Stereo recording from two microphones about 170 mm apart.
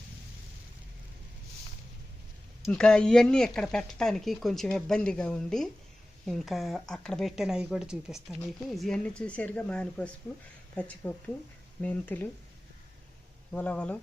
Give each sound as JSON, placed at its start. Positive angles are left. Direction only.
{"t": 2.6, "sound": "speech", "side_deg": 0}
{"t": 13.5, "sound": "speech", "side_deg": 10}